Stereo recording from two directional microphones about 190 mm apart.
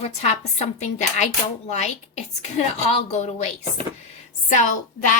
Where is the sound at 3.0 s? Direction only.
35° left (ahead or behind).